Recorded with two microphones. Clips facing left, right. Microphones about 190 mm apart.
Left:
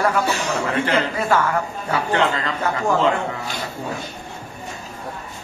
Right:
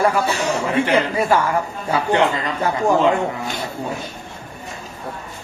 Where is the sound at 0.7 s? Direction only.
15° right (ahead or behind).